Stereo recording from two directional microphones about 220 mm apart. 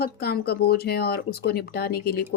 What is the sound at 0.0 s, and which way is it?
Speech, 45° left (ahead or behind).